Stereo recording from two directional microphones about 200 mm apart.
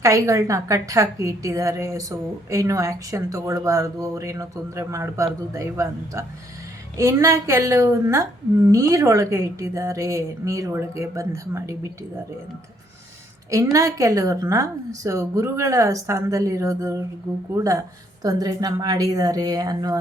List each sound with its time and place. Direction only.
0.0 s a woman's voice: 15° right (ahead or behind)
13.5 s a woman's voice: 15° right (ahead or behind)